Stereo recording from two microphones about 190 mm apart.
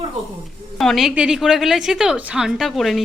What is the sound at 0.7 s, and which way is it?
A woman's voice, centre (ahead or behind).